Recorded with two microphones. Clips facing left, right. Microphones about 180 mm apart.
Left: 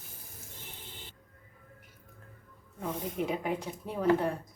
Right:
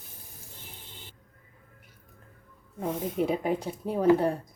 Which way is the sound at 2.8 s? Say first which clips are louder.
Right 5 dB; 35° right (ahead or behind).